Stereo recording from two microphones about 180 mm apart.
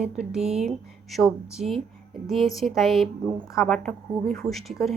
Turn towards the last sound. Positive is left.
turn(degrees=0)  # may be behind; listen again after turning